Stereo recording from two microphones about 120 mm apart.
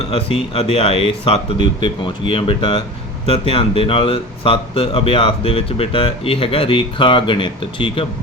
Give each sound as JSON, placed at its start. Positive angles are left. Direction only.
{"t": 0.0, "sound": "speech", "side_deg": 50}